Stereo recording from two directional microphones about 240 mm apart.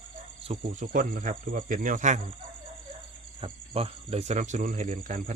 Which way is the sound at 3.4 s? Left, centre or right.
Right.